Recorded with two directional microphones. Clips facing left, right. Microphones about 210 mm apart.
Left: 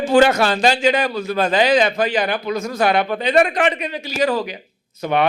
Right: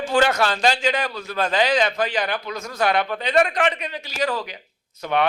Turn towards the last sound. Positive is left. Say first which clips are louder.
# left 3 dB
turn(degrees=10)  # may be behind; listen again after turning